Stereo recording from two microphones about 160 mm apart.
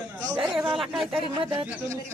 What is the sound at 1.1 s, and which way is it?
Speech, 35° right (ahead or behind).